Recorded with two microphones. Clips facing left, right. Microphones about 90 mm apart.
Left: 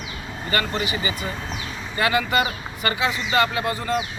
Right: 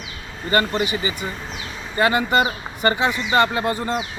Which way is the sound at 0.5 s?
25° right (ahead or behind).